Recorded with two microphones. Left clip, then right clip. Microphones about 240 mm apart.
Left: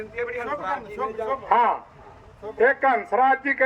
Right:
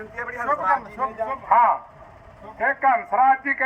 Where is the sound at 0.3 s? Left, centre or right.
Centre.